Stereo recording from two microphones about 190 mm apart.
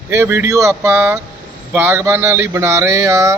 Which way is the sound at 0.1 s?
15° right (ahead or behind).